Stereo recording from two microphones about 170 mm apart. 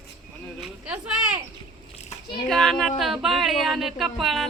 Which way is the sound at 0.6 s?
5° right (ahead or behind).